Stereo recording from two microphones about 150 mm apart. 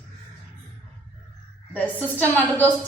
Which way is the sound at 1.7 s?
10° left (ahead or behind).